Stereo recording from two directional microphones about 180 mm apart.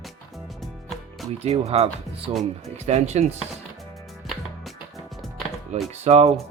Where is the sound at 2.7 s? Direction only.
35° right (ahead or behind).